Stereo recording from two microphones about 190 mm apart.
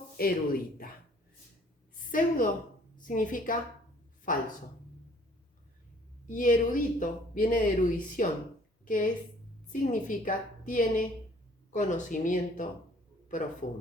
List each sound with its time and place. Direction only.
0.2 s speech: 50° left (ahead or behind)
2.0 s a woman's voice: 45° left (ahead or behind)
6.2 s a woman's voice: 45° left (ahead or behind)